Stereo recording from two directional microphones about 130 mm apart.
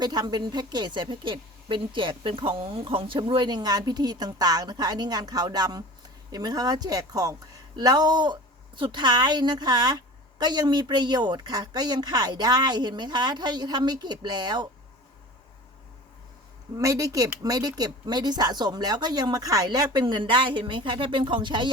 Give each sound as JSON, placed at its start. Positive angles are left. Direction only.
{"t": 0.0, "sound": "a woman's voice", "side_deg": -30}
{"t": 16.7, "sound": "a woman's voice", "side_deg": -25}